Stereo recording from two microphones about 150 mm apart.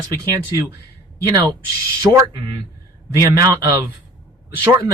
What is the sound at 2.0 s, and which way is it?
Speech, 25° right (ahead or behind).